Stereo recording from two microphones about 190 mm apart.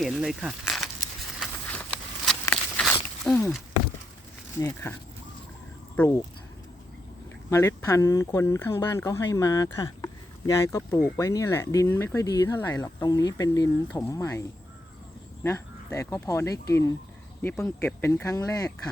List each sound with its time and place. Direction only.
0.0 s a sound: 5° right (ahead or behind)
3.2 s speech: centre (ahead or behind)
4.6 s speech: 10° left (ahead or behind)
7.5 s speech: 15° left (ahead or behind)
15.4 s speech: 15° left (ahead or behind)